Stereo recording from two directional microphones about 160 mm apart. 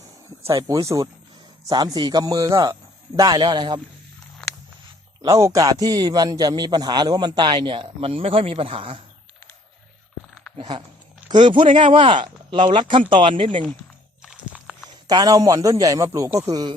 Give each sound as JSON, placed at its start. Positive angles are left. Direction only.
{"t": 0.4, "sound": "a man's voice", "side_deg": -20}
{"t": 5.2, "sound": "a man's voice", "side_deg": -20}
{"t": 10.6, "sound": "speech", "side_deg": -30}
{"t": 14.3, "sound": "walk", "side_deg": -5}
{"t": 15.0, "sound": "a man's voice", "side_deg": -25}